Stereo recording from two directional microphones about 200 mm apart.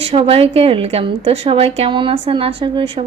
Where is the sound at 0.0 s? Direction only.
30° right (ahead or behind).